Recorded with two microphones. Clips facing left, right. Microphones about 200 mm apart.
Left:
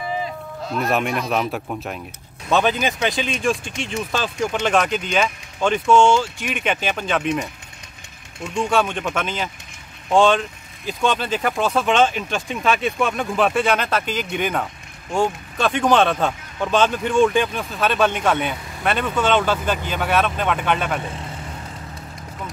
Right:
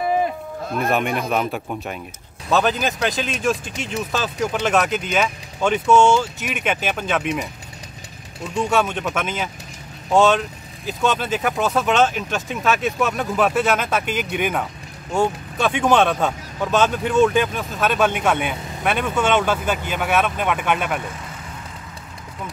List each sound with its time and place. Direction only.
0.2 s sheep: 50° right (ahead or behind)
0.8 s speech: centre (ahead or behind)
8.6 s speech: 5° right (ahead or behind)